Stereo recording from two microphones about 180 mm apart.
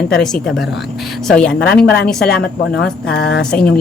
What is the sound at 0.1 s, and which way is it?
A woman's voice, 5° left (ahead or behind).